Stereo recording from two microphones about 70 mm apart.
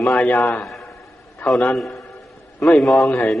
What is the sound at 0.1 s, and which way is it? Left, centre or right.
Speech, left.